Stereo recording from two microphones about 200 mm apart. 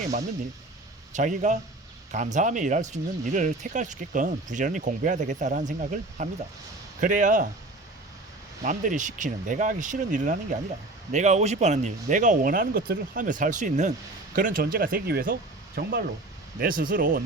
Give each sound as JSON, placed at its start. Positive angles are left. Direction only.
{"t": 1.1, "sound": "speech", "side_deg": -40}
{"t": 8.6, "sound": "speech", "side_deg": -40}